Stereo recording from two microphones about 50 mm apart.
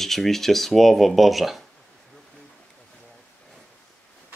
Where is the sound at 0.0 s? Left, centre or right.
Centre.